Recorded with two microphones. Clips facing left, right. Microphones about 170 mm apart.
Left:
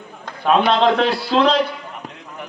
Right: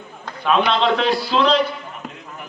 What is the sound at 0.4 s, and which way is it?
A man's voice, 50° left (ahead or behind).